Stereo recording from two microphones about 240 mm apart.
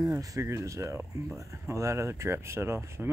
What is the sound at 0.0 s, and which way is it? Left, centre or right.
Speech, centre.